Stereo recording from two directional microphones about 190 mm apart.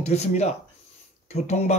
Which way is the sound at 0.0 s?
35° left (ahead or behind).